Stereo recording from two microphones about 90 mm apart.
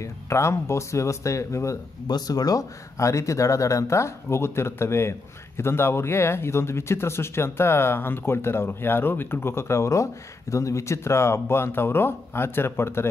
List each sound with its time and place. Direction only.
0.0 s speech: 30° left (ahead or behind)
2.0 s speech: 45° left (ahead or behind); by 13.1 s 30° left (ahead or behind)